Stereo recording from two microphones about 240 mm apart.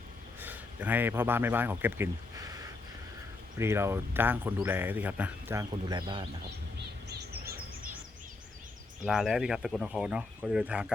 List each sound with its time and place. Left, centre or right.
0.3 s a man's voice: centre
7.1 s a sound: right
9.0 s speech: centre